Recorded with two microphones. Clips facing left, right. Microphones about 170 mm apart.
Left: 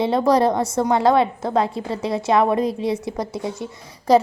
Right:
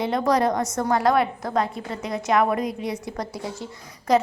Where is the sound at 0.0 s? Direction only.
30° left (ahead or behind).